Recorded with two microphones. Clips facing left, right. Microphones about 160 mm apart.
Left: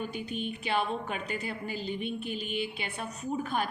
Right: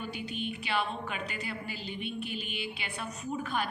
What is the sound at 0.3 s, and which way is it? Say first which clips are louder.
A woman's voice: left 2 dB; 45° left (ahead or behind).